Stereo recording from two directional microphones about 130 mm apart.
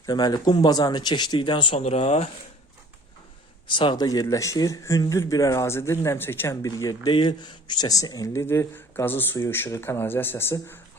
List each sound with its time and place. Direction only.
0.0 s speech: 30° left (ahead or behind); by 2.3 s 50° left (ahead or behind)
3.7 s speech: 40° left (ahead or behind); by 10.8 s 15° left (ahead or behind)